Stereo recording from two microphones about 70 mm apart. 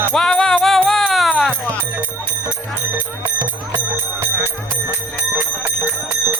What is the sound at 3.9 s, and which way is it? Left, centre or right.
Music, right.